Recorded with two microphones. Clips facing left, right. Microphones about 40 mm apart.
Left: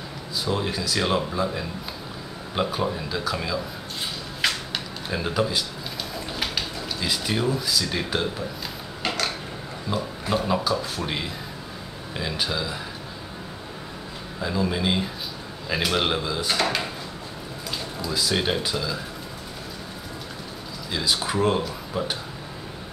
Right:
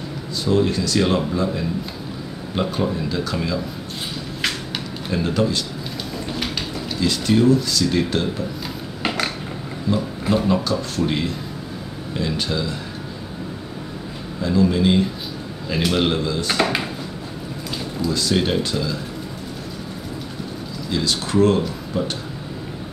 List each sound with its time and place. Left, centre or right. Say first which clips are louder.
0.5 s speech: right 8 dB; centre
4.4 s a sound: even; centre
6.1 s speech: right 3 dB; centre
9.0 s dishes: right 3 dB; centre
9.9 s speech: right 3 dB; centre
14.4 s speech: right 7 dB; centre
16.4 s speech: right 3 dB; centre
20.9 s speech: right 4 dB; centre